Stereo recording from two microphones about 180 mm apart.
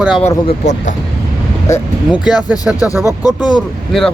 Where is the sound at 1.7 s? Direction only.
15° left (ahead or behind).